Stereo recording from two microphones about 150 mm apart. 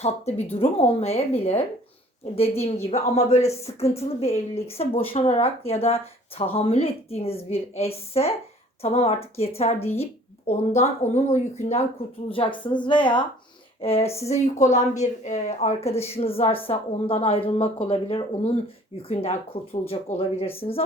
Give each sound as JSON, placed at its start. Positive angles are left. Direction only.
{"t": 0.0, "sound": "a woman's voice", "side_deg": 45}
{"t": 10.8, "sound": "speech", "side_deg": 50}
{"t": 12.3, "sound": "a woman's voice", "side_deg": 35}